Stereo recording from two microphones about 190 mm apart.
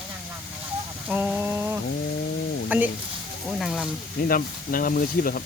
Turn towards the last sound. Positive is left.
turn(degrees=50)  # may be behind; listen again after turning